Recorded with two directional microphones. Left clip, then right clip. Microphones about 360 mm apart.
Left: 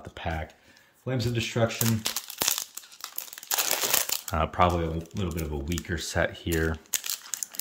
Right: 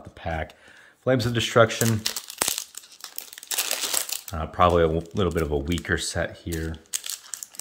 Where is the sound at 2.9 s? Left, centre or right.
Centre.